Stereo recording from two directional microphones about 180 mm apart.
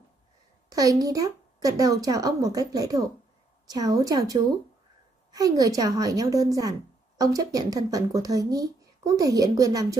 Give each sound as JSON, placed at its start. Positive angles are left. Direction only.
{"t": 0.7, "sound": "speech", "side_deg": -20}